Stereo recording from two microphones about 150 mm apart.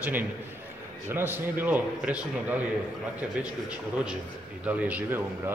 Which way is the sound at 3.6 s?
5° right (ahead or behind).